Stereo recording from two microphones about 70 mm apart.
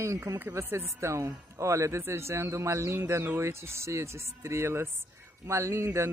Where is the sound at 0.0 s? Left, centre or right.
Right.